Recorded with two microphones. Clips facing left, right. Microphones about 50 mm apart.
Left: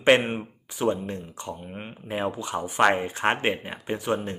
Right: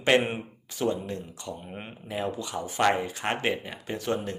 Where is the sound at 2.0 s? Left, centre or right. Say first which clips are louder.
Left 3 dB; left.